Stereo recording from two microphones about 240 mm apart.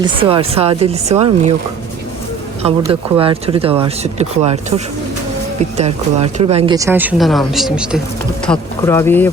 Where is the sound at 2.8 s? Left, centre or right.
Right; by 8.0 s centre.